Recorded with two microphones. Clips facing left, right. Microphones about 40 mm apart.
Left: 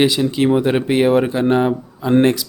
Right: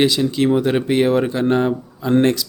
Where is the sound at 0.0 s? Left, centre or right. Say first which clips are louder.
Left 1 dB; centre.